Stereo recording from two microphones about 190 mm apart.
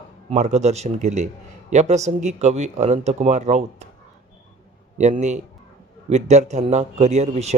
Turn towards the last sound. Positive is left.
turn(degrees=-35)  # may be behind; listen again after turning